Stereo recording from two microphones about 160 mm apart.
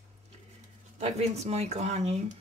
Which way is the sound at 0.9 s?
45° right (ahead or behind).